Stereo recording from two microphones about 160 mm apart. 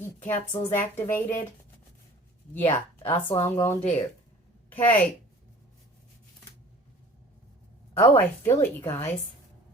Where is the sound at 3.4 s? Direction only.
15° left (ahead or behind).